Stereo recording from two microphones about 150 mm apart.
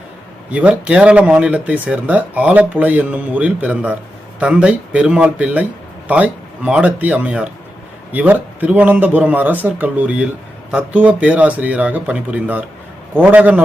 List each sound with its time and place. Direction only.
0.5 s speech: 10° right (ahead or behind)